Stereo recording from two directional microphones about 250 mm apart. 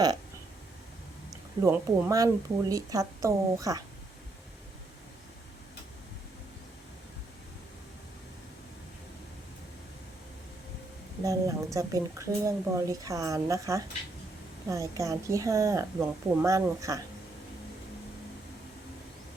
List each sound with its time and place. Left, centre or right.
1.6 s speech: centre
11.3 s speech: centre